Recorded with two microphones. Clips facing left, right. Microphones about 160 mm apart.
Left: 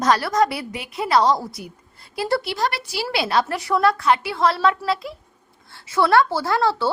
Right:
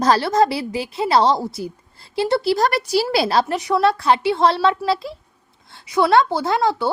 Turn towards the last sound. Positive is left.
turn(degrees=-15)  # may be behind; listen again after turning